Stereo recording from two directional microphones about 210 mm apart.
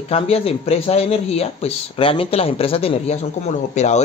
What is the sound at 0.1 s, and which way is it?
Speech, 30° left (ahead or behind).